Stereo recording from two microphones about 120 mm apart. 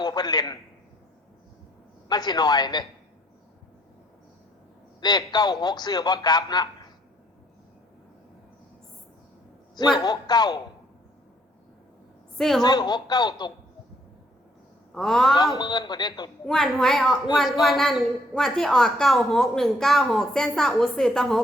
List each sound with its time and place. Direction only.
0.0 s a man's voice: 35° left (ahead or behind)
2.0 s speech: 35° left (ahead or behind)
4.9 s a man's voice: 35° left (ahead or behind)
10.0 s speech: 35° left (ahead or behind)
12.4 s speech: centre (ahead or behind)
12.6 s speech: 35° left (ahead or behind)
14.9 s speech: 5° left (ahead or behind)
15.5 s speech: 35° left (ahead or behind)
16.5 s speech: 5° left (ahead or behind)